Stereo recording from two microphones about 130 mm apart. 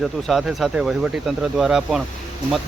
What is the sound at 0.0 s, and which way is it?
Speech, centre (ahead or behind).